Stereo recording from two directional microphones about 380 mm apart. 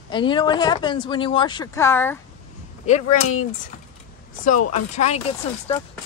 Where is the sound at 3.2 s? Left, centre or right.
Left.